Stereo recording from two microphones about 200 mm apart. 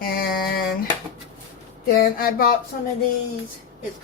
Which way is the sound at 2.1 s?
50° left (ahead or behind).